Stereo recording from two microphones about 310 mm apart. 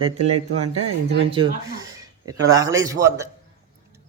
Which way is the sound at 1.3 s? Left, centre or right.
Centre.